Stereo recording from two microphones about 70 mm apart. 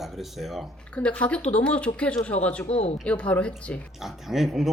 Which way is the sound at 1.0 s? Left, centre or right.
Centre.